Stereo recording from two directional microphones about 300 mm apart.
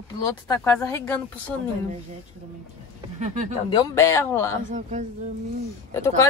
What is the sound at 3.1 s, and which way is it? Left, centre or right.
Speech, right.